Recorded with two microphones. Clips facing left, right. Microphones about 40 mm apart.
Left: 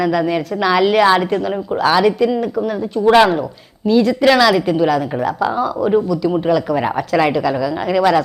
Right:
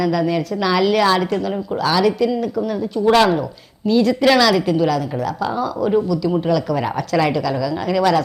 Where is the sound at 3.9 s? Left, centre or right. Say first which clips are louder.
Left 2 dB; centre.